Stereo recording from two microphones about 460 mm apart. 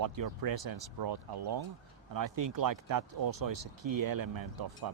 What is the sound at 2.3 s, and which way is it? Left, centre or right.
Speech, right.